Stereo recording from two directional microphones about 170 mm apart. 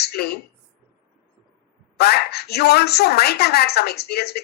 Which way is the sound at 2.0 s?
70° left (ahead or behind).